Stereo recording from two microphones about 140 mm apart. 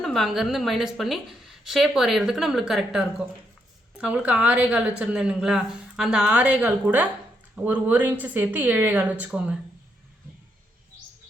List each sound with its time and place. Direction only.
0.0 s a woman's voice: centre (ahead or behind)